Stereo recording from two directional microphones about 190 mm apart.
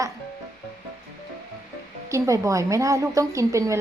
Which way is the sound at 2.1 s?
15° right (ahead or behind).